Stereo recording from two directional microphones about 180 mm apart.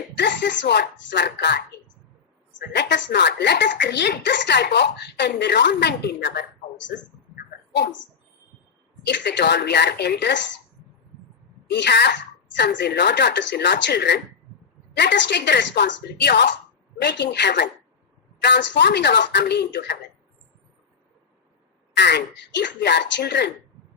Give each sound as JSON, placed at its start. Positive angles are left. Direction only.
{"t": 0.2, "sound": "speech", "side_deg": 75}
{"t": 9.0, "sound": "speech", "side_deg": 75}
{"t": 11.7, "sound": "speech", "side_deg": 70}
{"t": 21.9, "sound": "speech", "side_deg": 70}